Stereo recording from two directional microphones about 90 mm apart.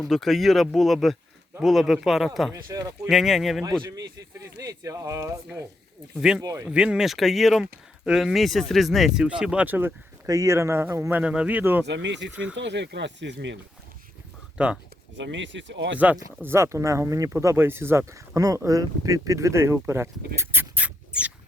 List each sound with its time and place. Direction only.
0.0 s speech: centre (ahead or behind)
2.5 s speech: 40° right (ahead or behind)
3.1 s speech: centre (ahead or behind)
3.8 s speech: 40° right (ahead or behind)
6.1 s speech: 5° right (ahead or behind)
6.4 s speech: 40° right (ahead or behind)
6.7 s speech: 10° right (ahead or behind)
10.2 s speech: 35° right (ahead or behind)
11.1 s speech: 15° right (ahead or behind)
14.6 s speech: 10° right (ahead or behind)
16.4 s speech: 30° right (ahead or behind)